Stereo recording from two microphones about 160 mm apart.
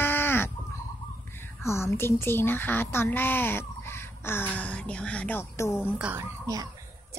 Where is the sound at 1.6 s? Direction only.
15° left (ahead or behind).